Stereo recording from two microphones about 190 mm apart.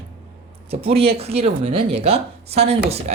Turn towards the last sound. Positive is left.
turn(degrees=-35)  # may be behind; listen again after turning